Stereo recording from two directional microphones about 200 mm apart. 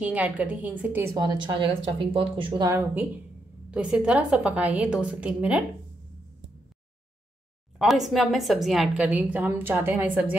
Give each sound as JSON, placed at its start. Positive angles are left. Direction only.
{"t": 0.0, "sound": "a woman's voice", "side_deg": -10}
{"t": 7.8, "sound": "a woman's voice", "side_deg": 0}